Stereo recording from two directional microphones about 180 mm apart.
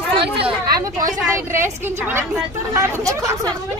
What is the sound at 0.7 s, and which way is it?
A woman's voice, 20° right (ahead or behind).